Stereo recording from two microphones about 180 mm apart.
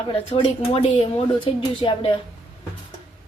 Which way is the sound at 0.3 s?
30° left (ahead or behind).